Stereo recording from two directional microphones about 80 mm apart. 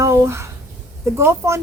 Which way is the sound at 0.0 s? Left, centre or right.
Right.